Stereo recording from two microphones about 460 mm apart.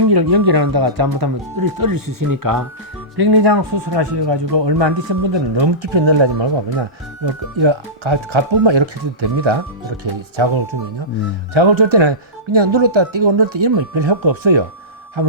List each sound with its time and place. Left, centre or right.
0.1 s speech: right
3.2 s speech: right